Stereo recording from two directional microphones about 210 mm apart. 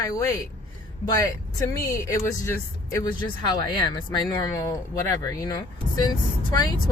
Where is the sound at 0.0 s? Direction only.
15° left (ahead or behind).